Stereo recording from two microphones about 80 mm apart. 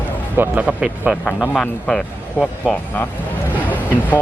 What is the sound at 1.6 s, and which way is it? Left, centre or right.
Speech, centre.